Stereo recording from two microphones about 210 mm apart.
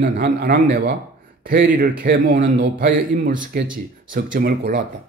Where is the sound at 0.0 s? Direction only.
50° right (ahead or behind).